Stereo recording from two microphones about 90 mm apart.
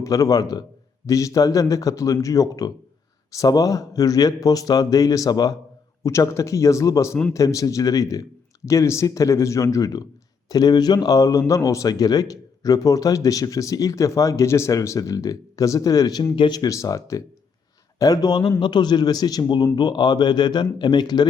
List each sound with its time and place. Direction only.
0.0 s a man's voice: 35° left (ahead or behind)
6.0 s a man's voice: 35° left (ahead or behind); by 21.2 s 50° left (ahead or behind)